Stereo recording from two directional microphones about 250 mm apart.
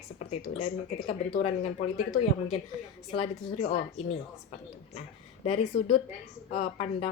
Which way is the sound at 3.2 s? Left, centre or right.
Left.